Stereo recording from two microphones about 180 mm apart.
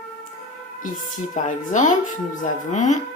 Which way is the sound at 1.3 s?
45° left (ahead or behind).